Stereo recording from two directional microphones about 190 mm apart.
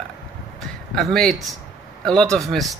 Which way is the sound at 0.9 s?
Centre (ahead or behind).